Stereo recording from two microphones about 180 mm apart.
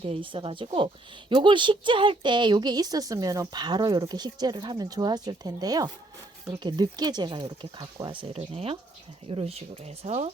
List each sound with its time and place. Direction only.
0.0 s speech: 30° right (ahead or behind)